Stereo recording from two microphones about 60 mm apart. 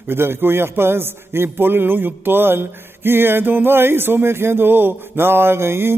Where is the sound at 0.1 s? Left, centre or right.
Right.